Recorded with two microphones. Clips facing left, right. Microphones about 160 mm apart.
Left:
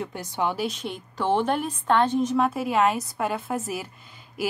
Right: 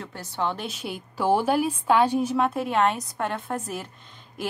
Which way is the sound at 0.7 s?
5° right (ahead or behind).